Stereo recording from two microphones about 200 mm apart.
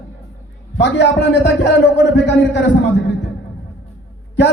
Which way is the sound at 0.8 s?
60° left (ahead or behind).